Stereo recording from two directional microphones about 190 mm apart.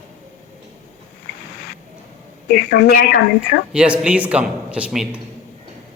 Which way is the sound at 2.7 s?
60° left (ahead or behind).